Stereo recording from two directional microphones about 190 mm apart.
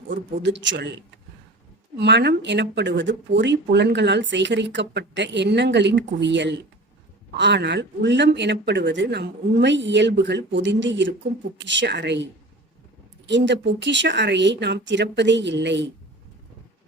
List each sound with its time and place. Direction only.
0.3 s speech: 70° right (ahead or behind)
2.0 s speech: 65° right (ahead or behind)